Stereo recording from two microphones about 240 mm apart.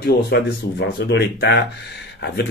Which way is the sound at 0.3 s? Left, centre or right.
Left.